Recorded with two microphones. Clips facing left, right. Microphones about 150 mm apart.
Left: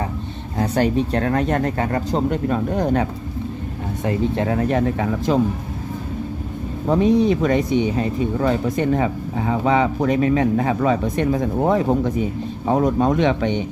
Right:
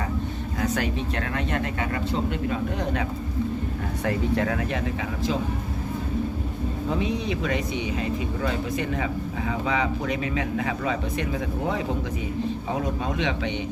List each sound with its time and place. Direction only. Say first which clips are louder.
0.6 s speech: left 8 dB; 35° left (ahead or behind)
4.0 s speech: left 4 dB; 25° left (ahead or behind); by 5.4 s 45° left (ahead or behind)
6.8 s speech: left 12 dB; 45° left (ahead or behind)